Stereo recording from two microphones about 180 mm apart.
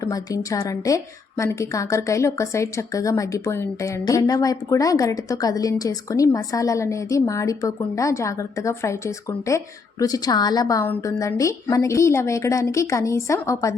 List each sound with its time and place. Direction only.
0.0 s a woman's voice: 20° left (ahead or behind)